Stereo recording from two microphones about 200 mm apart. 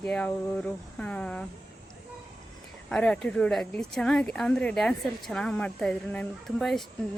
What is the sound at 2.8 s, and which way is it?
A woman's voice, 5° left (ahead or behind).